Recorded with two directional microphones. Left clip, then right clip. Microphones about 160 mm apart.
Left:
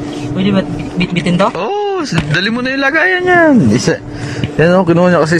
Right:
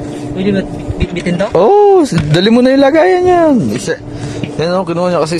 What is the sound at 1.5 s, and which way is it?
A man's voice, 55° right (ahead or behind).